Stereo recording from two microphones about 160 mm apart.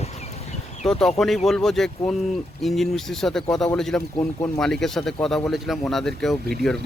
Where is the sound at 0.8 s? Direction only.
5° left (ahead or behind).